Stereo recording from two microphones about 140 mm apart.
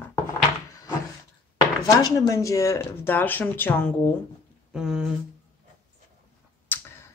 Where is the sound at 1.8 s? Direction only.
25° left (ahead or behind).